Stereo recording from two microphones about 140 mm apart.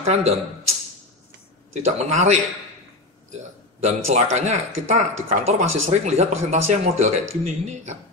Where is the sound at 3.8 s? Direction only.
50° right (ahead or behind).